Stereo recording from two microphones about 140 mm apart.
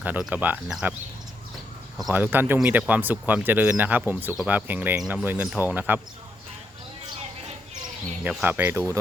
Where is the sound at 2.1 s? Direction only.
15° right (ahead or behind).